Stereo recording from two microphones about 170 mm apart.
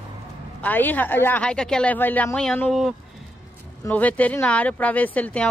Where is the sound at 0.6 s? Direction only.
10° left (ahead or behind).